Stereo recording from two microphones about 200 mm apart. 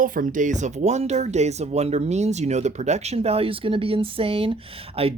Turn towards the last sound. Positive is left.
turn(degrees=-30)  # may be behind; listen again after turning